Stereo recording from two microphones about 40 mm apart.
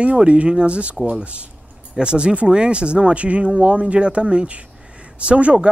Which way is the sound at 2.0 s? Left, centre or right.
Right.